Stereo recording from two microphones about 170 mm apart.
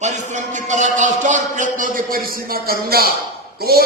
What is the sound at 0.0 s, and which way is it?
A man's voice, 45° right (ahead or behind).